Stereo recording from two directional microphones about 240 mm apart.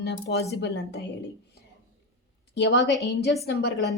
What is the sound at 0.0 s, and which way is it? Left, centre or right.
Speech, left.